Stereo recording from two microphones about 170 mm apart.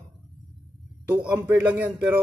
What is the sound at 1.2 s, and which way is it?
Speech, 10° right (ahead or behind).